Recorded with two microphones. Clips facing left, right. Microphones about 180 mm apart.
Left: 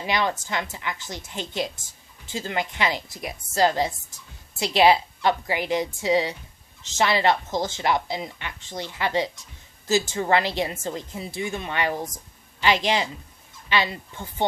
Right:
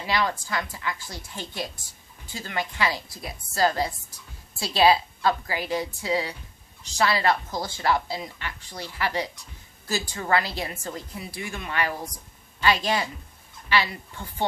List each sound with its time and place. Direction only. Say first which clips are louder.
0.0 s a woman's voice: left 1 dB; 20° left (ahead or behind)